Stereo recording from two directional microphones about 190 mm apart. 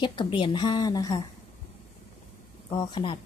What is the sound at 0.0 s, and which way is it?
A woman's voice, 25° left (ahead or behind).